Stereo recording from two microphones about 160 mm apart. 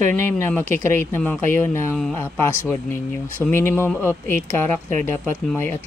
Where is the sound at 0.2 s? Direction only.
15° left (ahead or behind).